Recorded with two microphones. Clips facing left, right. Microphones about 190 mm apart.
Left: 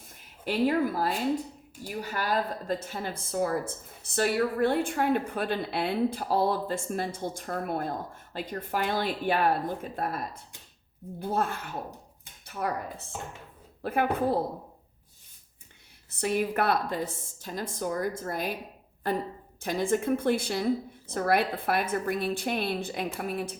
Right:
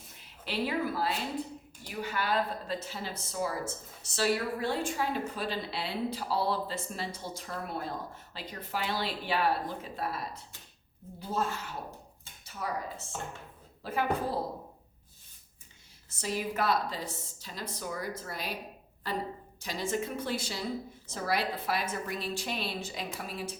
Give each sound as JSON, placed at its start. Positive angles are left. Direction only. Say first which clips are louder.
{"t": 0.1, "sound": "a woman's voice", "louder": "left 7 dB", "side_deg": 45}
{"t": 16.0, "sound": "a woman's voice", "louder": "left 6 dB", "side_deg": 60}